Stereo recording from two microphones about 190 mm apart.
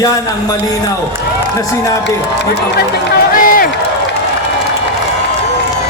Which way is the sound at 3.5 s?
50° left (ahead or behind).